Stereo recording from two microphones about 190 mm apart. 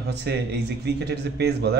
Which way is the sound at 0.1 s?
60° right (ahead or behind).